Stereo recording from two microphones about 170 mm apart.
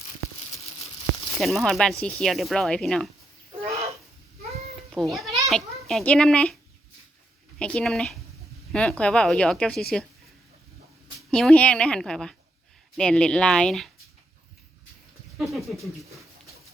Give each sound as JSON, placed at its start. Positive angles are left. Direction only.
{"t": 1.4, "sound": "speech", "side_deg": 0}
{"t": 3.6, "sound": "a sound", "side_deg": -40}
{"t": 4.9, "sound": "speech", "side_deg": 0}
{"t": 7.6, "sound": "speech", "side_deg": 5}
{"t": 11.3, "sound": "speech", "side_deg": 5}
{"t": 15.4, "sound": "speech", "side_deg": 0}